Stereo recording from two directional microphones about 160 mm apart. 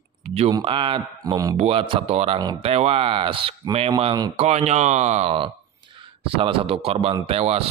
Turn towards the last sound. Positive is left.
turn(degrees=-35)  # may be behind; listen again after turning